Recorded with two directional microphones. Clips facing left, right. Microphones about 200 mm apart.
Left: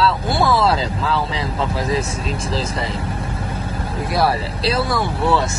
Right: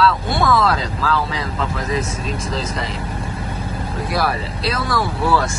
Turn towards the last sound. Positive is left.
turn(degrees=25)  # may be behind; listen again after turning